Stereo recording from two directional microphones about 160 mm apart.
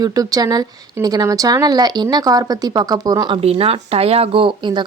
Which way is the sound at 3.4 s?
35° right (ahead or behind).